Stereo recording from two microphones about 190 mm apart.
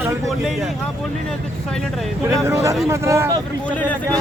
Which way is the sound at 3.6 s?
10° left (ahead or behind).